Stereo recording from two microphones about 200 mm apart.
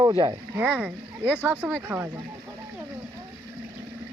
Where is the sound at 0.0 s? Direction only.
20° right (ahead or behind).